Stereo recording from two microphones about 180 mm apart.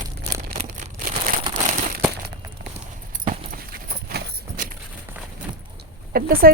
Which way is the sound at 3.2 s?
50° right (ahead or behind).